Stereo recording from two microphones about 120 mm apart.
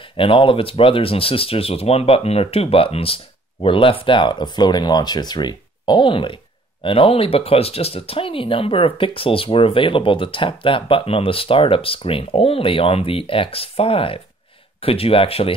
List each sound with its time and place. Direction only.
0.2 s speech: 45° left (ahead or behind)